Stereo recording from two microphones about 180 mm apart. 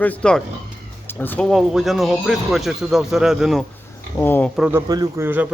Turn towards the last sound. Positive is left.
turn(degrees=-10)  # may be behind; listen again after turning